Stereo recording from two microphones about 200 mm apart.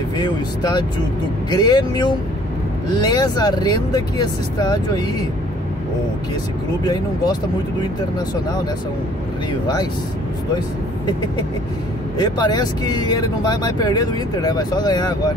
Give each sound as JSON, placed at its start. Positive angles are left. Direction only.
{"t": 0.2, "sound": "speech", "side_deg": 20}
{"t": 12.2, "sound": "speech", "side_deg": 20}